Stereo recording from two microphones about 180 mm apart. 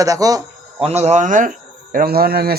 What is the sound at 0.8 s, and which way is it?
Speech, 35° right (ahead or behind).